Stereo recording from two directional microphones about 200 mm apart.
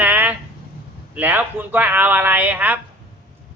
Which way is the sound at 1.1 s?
10° right (ahead or behind).